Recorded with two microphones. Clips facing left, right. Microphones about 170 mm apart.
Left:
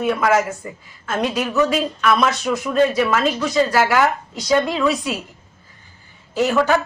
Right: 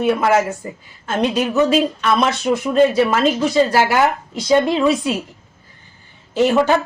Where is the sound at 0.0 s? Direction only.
30° right (ahead or behind).